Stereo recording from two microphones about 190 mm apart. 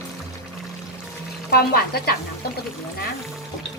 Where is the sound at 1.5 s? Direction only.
55° left (ahead or behind).